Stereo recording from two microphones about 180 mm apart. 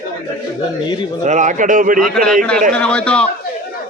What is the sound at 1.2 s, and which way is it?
Speech, 45° right (ahead or behind).